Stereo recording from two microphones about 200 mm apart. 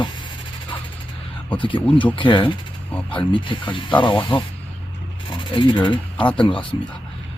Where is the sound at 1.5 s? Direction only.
25° left (ahead or behind).